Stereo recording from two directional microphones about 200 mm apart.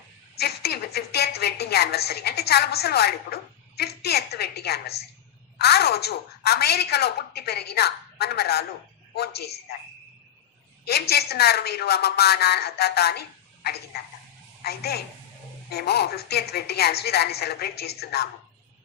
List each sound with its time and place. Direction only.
0.3 s a woman's voice: 55° left (ahead or behind)
10.8 s a woman's voice: 55° left (ahead or behind)